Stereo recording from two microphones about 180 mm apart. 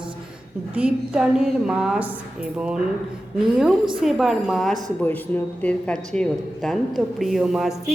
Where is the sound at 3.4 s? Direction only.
5° right (ahead or behind).